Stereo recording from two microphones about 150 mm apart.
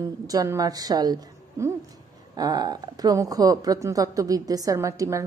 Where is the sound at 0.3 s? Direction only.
25° right (ahead or behind).